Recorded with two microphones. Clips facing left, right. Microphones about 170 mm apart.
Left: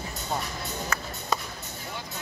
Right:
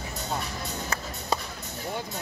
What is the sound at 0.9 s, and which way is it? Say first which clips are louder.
Music: even; 35° right (ahead or behind).